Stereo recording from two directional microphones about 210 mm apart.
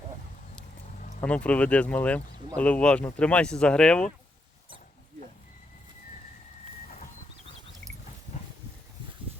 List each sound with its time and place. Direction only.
1.2 s speech: 5° left (ahead or behind)
6.8 s bird: 35° left (ahead or behind)